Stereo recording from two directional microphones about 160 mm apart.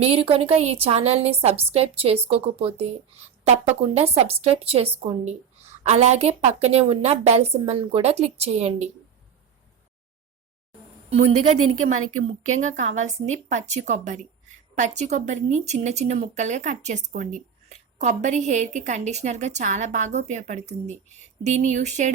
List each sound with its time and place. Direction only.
0.0 s a woman's voice: 35° right (ahead or behind)
11.1 s a woman's voice: 40° right (ahead or behind)